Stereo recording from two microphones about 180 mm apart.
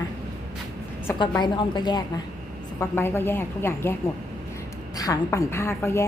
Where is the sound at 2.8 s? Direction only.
15° left (ahead or behind).